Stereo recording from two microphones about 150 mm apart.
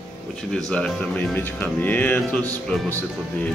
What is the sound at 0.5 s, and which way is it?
Speech, 5° left (ahead or behind).